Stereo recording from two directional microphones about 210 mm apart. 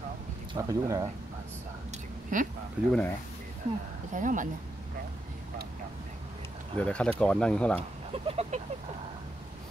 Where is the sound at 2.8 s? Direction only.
5° right (ahead or behind).